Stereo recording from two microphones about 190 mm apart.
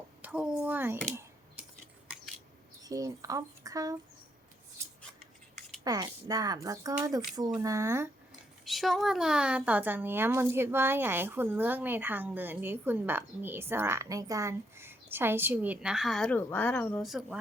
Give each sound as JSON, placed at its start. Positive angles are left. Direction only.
{"t": 0.2, "sound": "a sound", "side_deg": -5}
{"t": 2.8, "sound": "a woman's voice", "side_deg": -20}
{"t": 5.8, "sound": "a woman's voice", "side_deg": -20}
{"t": 8.6, "sound": "a woman's voice", "side_deg": 0}